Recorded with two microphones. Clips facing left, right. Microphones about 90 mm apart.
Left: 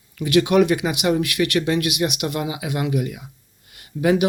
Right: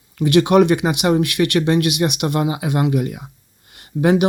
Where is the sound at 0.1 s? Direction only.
30° right (ahead or behind).